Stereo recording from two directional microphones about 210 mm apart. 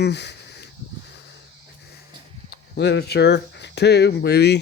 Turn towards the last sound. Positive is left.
turn(degrees=50)  # may be behind; listen again after turning